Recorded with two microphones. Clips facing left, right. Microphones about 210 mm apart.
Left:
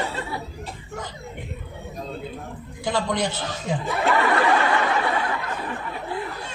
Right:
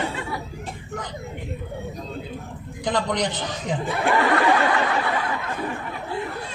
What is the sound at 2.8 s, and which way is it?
A man's voice, 20° right (ahead or behind).